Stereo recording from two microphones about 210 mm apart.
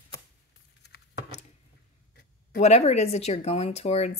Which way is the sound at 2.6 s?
30° left (ahead or behind).